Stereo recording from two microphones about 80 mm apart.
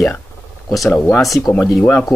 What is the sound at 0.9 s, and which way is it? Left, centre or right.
Speech, left.